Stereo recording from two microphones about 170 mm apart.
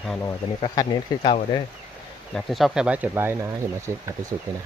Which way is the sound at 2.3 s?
Centre (ahead or behind).